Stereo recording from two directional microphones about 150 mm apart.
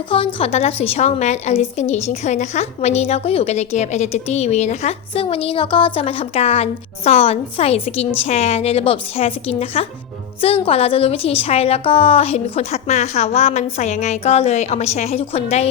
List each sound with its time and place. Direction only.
0.3 s a woman's voice: 40° left (ahead or behind)